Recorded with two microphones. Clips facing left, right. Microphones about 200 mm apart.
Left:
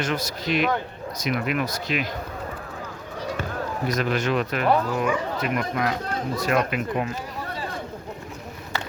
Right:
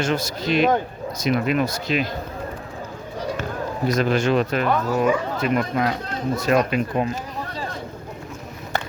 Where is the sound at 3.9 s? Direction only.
30° right (ahead or behind).